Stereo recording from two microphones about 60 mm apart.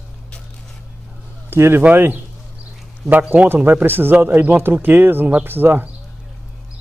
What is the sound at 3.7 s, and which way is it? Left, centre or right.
Speech, right.